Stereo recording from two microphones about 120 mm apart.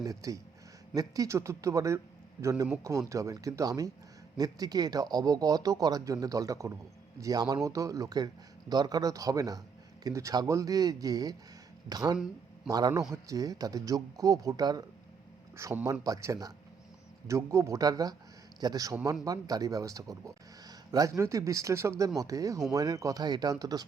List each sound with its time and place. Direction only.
0.0 s a man's voice: 30° right (ahead or behind)